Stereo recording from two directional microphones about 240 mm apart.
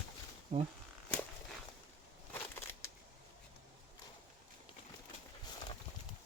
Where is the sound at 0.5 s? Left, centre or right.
Right.